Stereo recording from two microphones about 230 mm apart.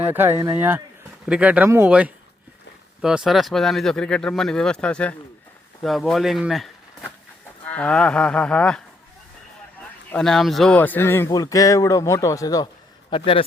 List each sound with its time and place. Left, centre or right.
0.1 s speech: centre
10.1 s a man's voice: centre; by 13.4 s left